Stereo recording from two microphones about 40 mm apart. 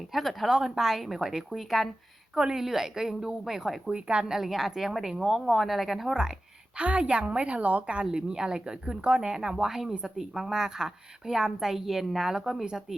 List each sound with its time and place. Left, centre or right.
0.1 s speech: centre
0.5 s a woman's voice: centre
1.5 s speech: centre
2.3 s speech: right
2.6 s a woman's voice: centre
3.8 s speech: right
4.3 s a woman's voice: centre
6.7 s a woman's voice: right; by 12.6 s centre